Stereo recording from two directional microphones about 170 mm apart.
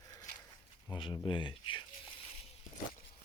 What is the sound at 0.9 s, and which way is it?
Speech, 30° left (ahead or behind).